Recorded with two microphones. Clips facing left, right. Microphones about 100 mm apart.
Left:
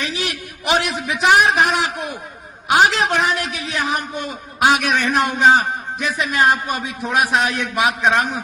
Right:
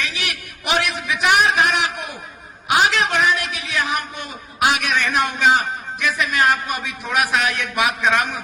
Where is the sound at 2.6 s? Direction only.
35° left (ahead or behind).